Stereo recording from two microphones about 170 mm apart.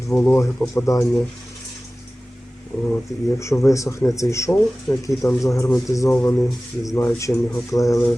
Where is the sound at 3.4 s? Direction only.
15° left (ahead or behind).